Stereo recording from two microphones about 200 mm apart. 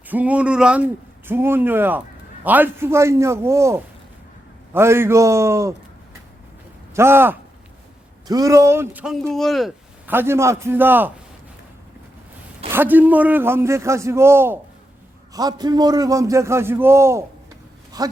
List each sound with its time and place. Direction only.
0.1 s speech: 5° right (ahead or behind)
6.9 s speech: 10° right (ahead or behind)
12.7 s speech: 10° right (ahead or behind)